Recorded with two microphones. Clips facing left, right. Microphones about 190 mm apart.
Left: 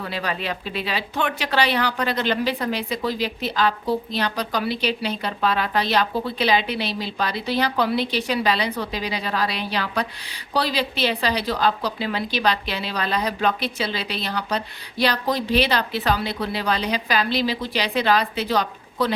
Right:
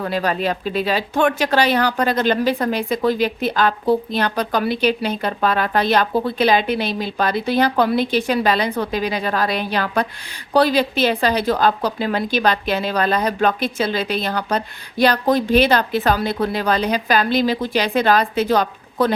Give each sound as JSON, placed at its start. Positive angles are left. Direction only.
{"t": 0.0, "sound": "speech", "side_deg": -45}